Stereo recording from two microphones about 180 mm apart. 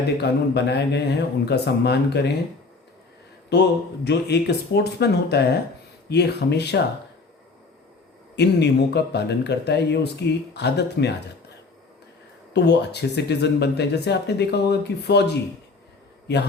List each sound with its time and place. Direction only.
0.2 s speech: 70° left (ahead or behind)
3.5 s speech: 70° left (ahead or behind)
8.4 s speech: 65° left (ahead or behind)
12.5 s speech: 70° left (ahead or behind)